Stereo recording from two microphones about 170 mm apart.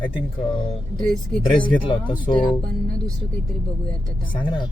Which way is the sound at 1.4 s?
10° left (ahead or behind).